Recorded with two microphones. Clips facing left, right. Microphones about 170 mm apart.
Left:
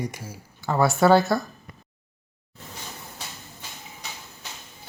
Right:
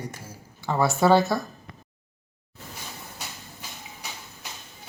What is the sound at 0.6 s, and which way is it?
Speech, centre (ahead or behind).